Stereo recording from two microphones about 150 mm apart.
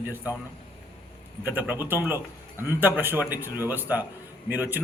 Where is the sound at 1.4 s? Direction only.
15° right (ahead or behind).